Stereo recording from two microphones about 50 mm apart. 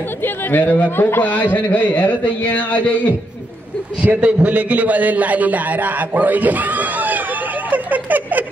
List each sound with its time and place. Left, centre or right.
0.2 s speech: left
0.7 s speech: left
0.9 s speech: left
4.2 s a man's voice: right